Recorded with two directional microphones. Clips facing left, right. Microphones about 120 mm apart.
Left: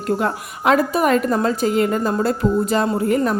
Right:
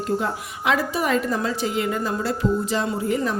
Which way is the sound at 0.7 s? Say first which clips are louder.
Left 6 dB; 50° left (ahead or behind).